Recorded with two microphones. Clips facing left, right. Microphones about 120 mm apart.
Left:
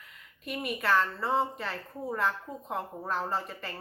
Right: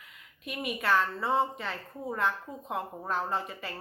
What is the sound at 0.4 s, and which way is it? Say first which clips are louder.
A woman's voice: even; centre (ahead or behind).